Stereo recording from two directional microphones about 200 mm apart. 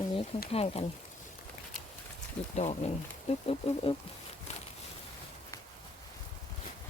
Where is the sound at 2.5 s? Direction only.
35° left (ahead or behind).